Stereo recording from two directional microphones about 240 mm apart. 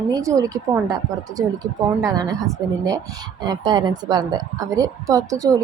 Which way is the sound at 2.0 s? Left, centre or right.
Centre.